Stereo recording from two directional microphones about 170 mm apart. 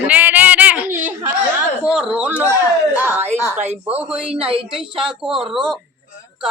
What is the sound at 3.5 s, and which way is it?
Speech, 40° right (ahead or behind).